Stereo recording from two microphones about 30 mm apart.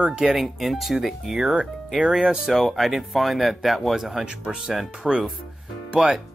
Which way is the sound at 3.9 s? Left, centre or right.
Centre.